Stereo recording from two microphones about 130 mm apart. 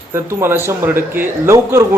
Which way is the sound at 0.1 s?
20° right (ahead or behind).